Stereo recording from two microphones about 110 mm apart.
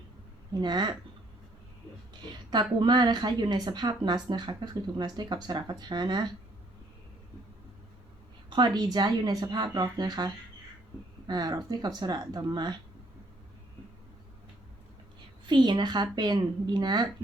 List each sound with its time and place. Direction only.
0.6 s speech: 40° right (ahead or behind)
2.5 s speech: 40° right (ahead or behind)
8.4 s speech: 45° right (ahead or behind)
15.4 s a woman's voice: 45° right (ahead or behind)